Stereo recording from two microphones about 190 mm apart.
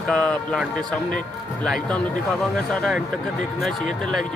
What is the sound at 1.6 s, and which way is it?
Speech, 5° left (ahead or behind).